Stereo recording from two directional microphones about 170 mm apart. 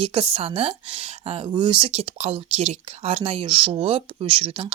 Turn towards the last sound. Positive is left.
turn(degrees=-35)  # may be behind; listen again after turning